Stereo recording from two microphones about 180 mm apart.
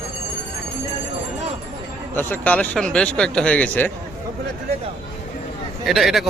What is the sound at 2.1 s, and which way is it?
Speech, 10° left (ahead or behind).